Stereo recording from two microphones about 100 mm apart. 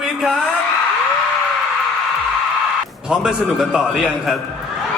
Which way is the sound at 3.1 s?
5° right (ahead or behind).